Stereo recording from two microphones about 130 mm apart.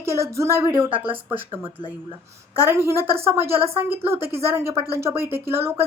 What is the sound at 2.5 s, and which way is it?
Speech, 20° right (ahead or behind).